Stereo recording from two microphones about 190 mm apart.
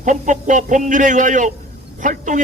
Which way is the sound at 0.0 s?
40° right (ahead or behind).